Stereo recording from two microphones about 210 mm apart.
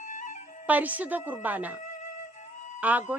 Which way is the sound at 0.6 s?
5° right (ahead or behind).